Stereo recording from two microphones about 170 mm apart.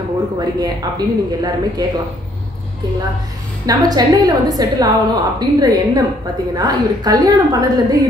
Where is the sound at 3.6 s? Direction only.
20° right (ahead or behind).